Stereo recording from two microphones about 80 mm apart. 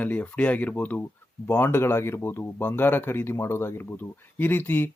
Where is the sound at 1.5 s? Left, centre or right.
Left.